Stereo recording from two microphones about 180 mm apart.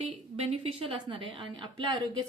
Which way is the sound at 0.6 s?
30° right (ahead or behind).